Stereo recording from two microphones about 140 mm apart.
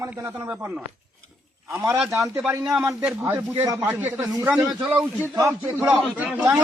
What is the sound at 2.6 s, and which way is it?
Speech, 5° right (ahead or behind).